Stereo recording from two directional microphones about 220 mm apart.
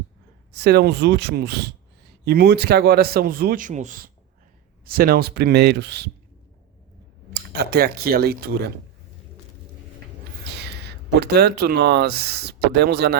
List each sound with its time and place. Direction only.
0.5 s speech: 50° right (ahead or behind)
7.5 s speech: 45° right (ahead or behind)
10.5 s speech: 50° right (ahead or behind)